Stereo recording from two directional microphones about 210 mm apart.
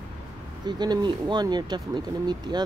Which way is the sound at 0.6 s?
20° right (ahead or behind).